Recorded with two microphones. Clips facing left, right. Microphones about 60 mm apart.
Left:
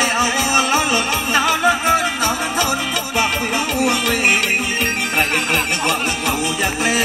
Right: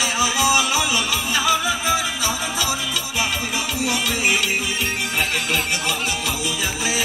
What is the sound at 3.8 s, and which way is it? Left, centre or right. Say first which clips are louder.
Music: left 5 dB; left.